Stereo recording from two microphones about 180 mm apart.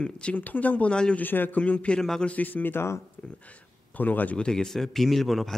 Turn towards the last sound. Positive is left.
turn(degrees=0)  # may be behind; listen again after turning